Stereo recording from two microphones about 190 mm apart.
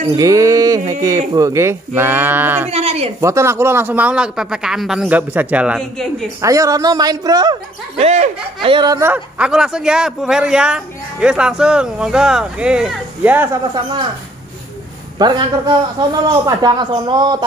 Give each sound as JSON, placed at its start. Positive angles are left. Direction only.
{"t": 0.1, "sound": "a sound", "side_deg": -15}
{"t": 1.0, "sound": "a man's voice", "side_deg": -20}
{"t": 2.7, "sound": "a sound", "side_deg": -30}
{"t": 3.2, "sound": "a man's voice", "side_deg": -15}
{"t": 6.4, "sound": "a man's voice", "side_deg": -15}
{"t": 8.0, "sound": "speech", "side_deg": -35}
{"t": 8.6, "sound": "a man's voice", "side_deg": -20}
{"t": 15.1, "sound": "a man's voice", "side_deg": -25}